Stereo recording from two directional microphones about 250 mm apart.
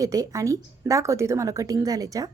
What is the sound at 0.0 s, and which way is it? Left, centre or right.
A woman's voice, centre.